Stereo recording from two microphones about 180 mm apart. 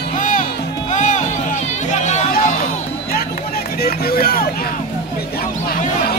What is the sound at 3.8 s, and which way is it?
Speech, 55° left (ahead or behind).